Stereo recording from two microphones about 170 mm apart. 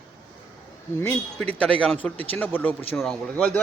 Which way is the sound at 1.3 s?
5° left (ahead or behind).